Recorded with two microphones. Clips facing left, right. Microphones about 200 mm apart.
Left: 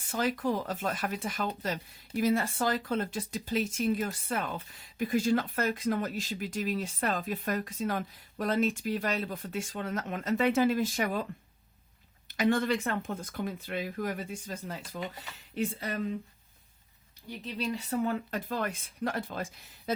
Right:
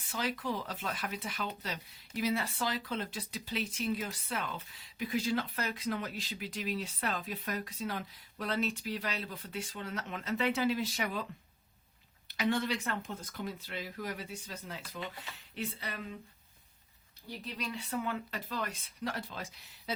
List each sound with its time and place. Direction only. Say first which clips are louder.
0.0 s speech: left 6 dB; 45° left (ahead or behind)
12.4 s speech: left 5 dB; 50° left (ahead or behind)
17.6 s speech: left 7 dB; 40° left (ahead or behind)